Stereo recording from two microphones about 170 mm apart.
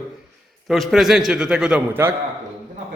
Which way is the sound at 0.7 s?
Centre (ahead or behind).